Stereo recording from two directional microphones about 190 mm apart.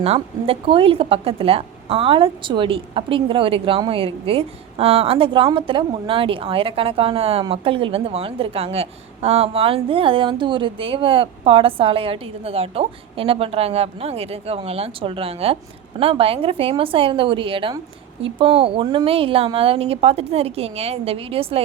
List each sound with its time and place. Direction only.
0.0 s a woman's voice: 30° right (ahead or behind)